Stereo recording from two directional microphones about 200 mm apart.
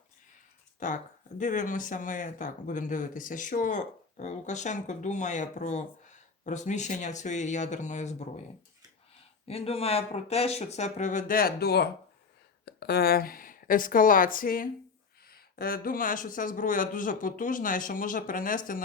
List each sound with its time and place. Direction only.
0.8 s speech: 40° left (ahead or behind)
9.5 s a man's voice: 30° left (ahead or behind)